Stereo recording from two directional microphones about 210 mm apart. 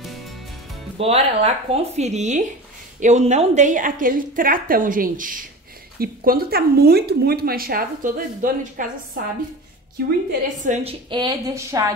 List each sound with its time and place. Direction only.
0.9 s a woman's voice: 30° right (ahead or behind); by 10.1 s 45° right (ahead or behind)
10.6 s speech: 30° right (ahead or behind); by 11.9 s 15° right (ahead or behind)